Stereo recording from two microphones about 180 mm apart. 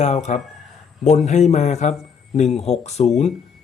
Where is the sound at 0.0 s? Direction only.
40° left (ahead or behind).